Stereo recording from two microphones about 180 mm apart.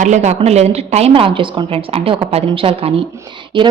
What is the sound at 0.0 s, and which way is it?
A woman's voice, 40° right (ahead or behind).